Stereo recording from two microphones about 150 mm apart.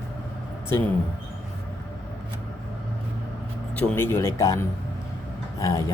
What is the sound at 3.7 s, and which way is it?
Speech, 15° left (ahead or behind).